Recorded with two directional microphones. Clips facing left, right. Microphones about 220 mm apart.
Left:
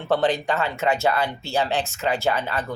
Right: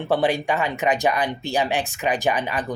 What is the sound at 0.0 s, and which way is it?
Speech, 10° right (ahead or behind).